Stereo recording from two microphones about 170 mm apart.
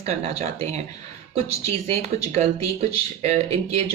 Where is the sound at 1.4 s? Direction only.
35° right (ahead or behind).